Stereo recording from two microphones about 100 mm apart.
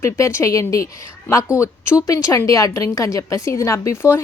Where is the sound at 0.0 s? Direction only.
25° left (ahead or behind).